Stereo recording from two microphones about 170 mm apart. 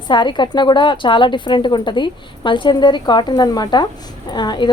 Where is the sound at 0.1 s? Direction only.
25° left (ahead or behind).